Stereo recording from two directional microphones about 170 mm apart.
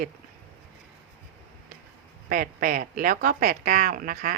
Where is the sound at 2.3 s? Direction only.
55° right (ahead or behind).